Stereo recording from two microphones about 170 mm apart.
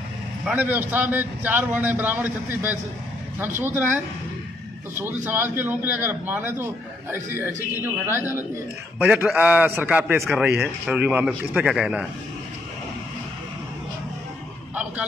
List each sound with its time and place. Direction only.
0.5 s a man's voice: 10° right (ahead or behind)
4.9 s a man's voice: 15° right (ahead or behind)